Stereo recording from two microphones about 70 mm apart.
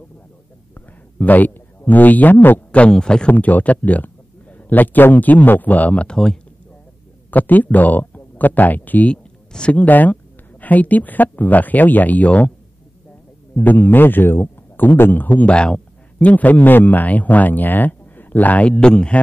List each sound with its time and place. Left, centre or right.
0.7 s a sound: left
2.9 s speech: centre
3.3 s a man's voice: left
7.2 s a man's voice: left
13.6 s a man's voice: left